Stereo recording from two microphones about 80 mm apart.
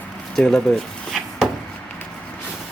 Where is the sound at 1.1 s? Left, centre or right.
Centre.